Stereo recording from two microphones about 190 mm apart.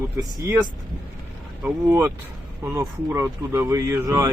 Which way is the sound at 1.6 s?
15° right (ahead or behind).